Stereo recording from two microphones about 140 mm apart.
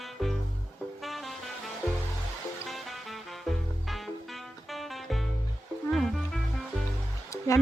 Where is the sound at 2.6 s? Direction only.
Centre (ahead or behind).